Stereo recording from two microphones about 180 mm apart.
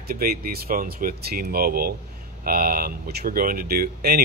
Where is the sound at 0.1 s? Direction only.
55° right (ahead or behind).